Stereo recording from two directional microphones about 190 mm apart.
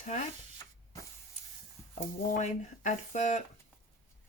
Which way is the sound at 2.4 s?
40° left (ahead or behind).